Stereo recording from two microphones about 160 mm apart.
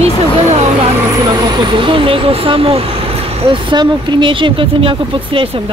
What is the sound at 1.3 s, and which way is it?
Speech, 30° right (ahead or behind).